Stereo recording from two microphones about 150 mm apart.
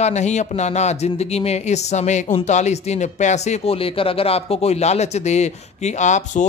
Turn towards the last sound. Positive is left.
turn(degrees=50)  # may be behind; listen again after turning